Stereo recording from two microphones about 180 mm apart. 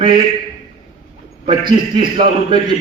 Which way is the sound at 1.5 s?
30° right (ahead or behind).